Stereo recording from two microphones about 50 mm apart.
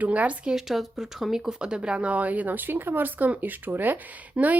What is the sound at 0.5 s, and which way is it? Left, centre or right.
Speech, centre.